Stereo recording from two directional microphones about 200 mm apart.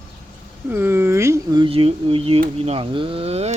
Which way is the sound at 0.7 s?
10° right (ahead or behind).